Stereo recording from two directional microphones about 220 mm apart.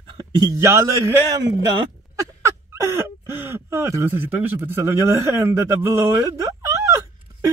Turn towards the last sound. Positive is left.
turn(degrees=-15)  # may be behind; listen again after turning